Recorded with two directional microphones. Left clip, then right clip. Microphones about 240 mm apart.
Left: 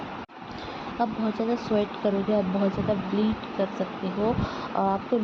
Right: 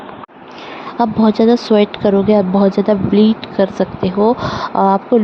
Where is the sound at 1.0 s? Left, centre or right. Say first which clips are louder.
Right 15 dB; right.